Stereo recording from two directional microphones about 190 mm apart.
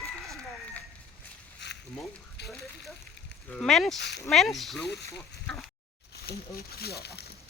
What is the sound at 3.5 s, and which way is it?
Speech, centre (ahead or behind).